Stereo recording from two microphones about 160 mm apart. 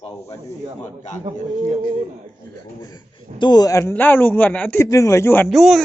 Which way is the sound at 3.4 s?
25° left (ahead or behind).